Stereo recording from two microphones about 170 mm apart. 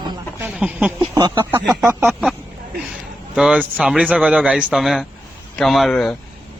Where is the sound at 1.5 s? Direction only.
15° right (ahead or behind).